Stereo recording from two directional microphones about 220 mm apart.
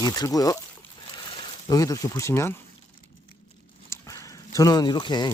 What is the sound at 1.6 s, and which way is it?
Speech, 15° left (ahead or behind).